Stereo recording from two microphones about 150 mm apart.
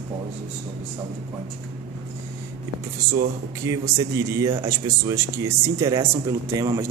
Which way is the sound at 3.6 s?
20° right (ahead or behind).